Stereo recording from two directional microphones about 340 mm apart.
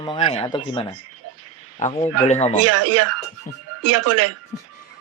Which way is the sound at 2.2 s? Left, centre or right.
Centre.